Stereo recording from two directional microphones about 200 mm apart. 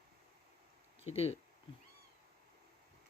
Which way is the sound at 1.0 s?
30° left (ahead or behind).